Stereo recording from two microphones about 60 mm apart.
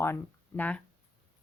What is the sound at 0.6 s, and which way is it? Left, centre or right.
Speech, left.